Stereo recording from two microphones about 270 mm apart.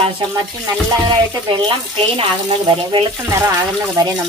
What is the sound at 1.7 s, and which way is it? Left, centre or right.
Speech, right.